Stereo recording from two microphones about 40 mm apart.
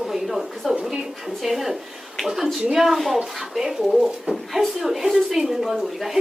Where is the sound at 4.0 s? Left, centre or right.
Right.